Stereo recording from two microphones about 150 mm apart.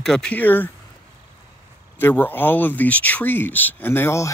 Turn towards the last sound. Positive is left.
turn(degrees=15)  # may be behind; listen again after turning